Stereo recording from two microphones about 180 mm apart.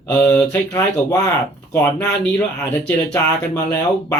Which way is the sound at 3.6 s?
5° left (ahead or behind).